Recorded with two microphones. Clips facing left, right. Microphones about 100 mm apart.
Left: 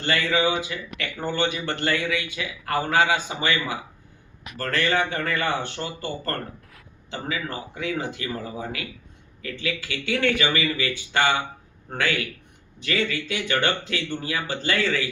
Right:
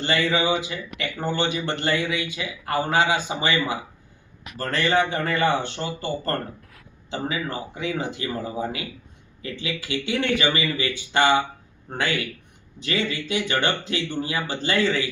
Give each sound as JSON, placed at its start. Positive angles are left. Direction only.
{"t": 0.0, "sound": "a man's voice", "side_deg": -20}